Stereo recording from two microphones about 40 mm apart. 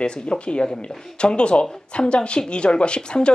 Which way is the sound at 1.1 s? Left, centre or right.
Left.